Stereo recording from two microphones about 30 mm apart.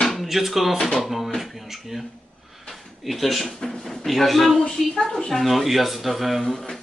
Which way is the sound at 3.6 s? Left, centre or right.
Centre.